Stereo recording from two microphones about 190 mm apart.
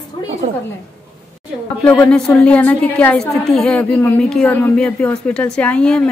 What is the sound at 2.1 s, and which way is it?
A woman's voice, 5° left (ahead or behind).